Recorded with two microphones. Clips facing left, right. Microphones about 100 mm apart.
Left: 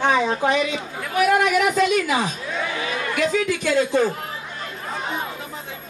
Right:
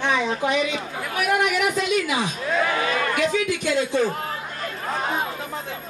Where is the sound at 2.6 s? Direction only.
50° right (ahead or behind).